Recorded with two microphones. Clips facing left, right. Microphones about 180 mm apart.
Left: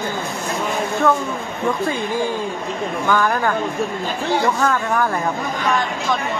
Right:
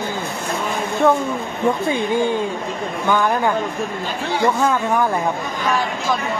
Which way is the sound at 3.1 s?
20° right (ahead or behind).